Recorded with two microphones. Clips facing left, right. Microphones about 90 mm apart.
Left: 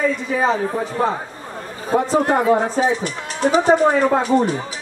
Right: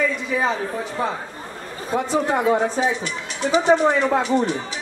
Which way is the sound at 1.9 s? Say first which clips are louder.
Left 4 dB; 35° left (ahead or behind).